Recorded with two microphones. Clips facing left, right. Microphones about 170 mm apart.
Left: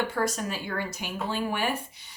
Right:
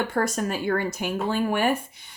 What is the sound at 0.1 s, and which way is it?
Speech, 50° right (ahead or behind).